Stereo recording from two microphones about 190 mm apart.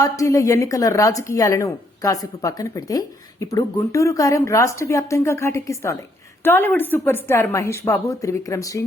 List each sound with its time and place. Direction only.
0.0 s a woman's voice: 15° left (ahead or behind)